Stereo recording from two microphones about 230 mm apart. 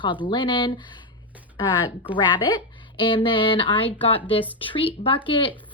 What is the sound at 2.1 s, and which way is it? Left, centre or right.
Speech, centre.